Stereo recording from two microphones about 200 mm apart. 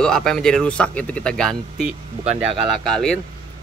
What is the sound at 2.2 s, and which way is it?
Speech, 25° right (ahead or behind).